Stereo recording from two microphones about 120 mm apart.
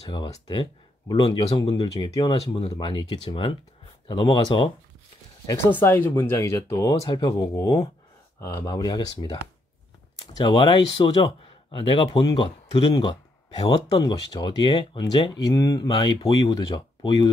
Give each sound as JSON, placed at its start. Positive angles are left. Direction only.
{"t": 0.5, "sound": "speech", "side_deg": 40}
{"t": 5.7, "sound": "speech", "side_deg": 15}
{"t": 12.9, "sound": "a sound", "side_deg": 35}
{"t": 13.6, "sound": "speech", "side_deg": 40}